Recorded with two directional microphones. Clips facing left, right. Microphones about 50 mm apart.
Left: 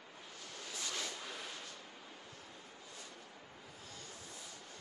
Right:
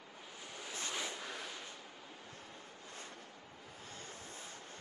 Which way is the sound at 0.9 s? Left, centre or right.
Centre.